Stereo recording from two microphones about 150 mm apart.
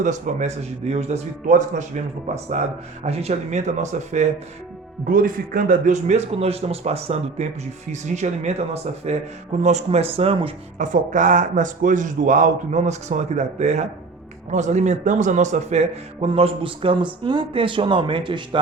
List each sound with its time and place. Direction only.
0.0 s a man's voice: 55° right (ahead or behind)
5.0 s a man's voice: 65° right (ahead or behind); by 10.5 s 40° right (ahead or behind)
10.8 s a man's voice: 55° right (ahead or behind)
16.2 s speech: 40° right (ahead or behind)